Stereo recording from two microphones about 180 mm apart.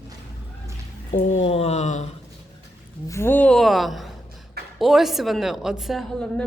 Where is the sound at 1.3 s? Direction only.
35° left (ahead or behind).